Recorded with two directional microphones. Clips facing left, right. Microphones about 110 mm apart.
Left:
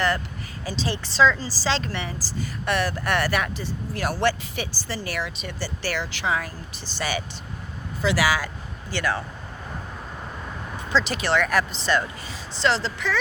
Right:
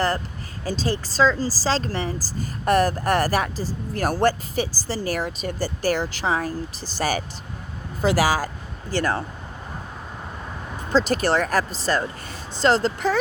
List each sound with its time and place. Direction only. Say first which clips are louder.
0.6 s speech: right 4 dB; 45° right (ahead or behind)
10.9 s speech: right 3 dB; 45° right (ahead or behind)